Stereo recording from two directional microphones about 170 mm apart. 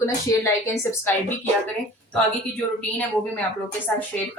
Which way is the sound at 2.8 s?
10° left (ahead or behind).